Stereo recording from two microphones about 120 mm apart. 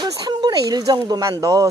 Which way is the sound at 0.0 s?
35° right (ahead or behind).